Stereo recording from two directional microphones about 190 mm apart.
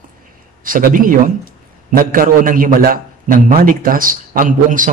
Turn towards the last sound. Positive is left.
turn(degrees=-45)  # may be behind; listen again after turning